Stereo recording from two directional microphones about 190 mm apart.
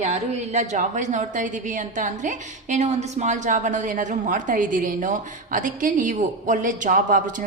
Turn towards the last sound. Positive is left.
turn(degrees=-45)  # may be behind; listen again after turning